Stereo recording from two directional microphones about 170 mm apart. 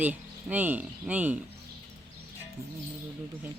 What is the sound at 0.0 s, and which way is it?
Speech, 10° right (ahead or behind).